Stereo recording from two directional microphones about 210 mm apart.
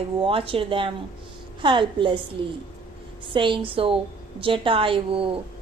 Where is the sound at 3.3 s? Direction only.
25° right (ahead or behind).